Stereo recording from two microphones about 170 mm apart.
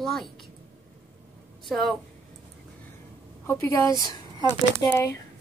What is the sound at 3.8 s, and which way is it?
Speech, 20° left (ahead or behind).